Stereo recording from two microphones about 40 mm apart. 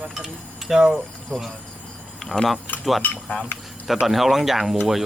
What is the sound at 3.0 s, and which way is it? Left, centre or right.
Speech, left.